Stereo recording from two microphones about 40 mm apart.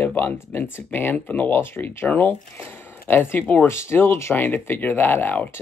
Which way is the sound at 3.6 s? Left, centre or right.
Left.